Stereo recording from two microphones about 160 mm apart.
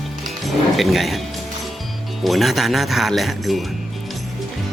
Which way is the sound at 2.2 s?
Centre (ahead or behind).